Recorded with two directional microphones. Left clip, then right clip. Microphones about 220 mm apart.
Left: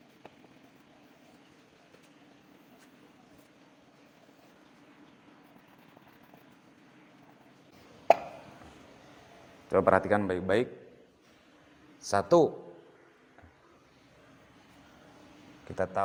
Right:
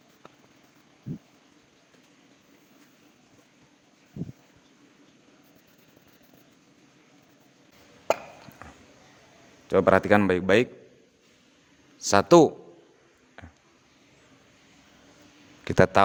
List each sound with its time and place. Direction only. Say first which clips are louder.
9.6 s speech: right 4 dB; 40° right (ahead or behind)
10.1 s speech: right 7 dB; 75° right (ahead or behind)
12.0 s speech: right 7 dB; 70° right (ahead or behind)
15.6 s speech: right 11 dB; 85° right